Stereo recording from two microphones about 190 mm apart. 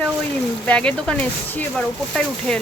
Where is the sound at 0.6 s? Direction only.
5° left (ahead or behind).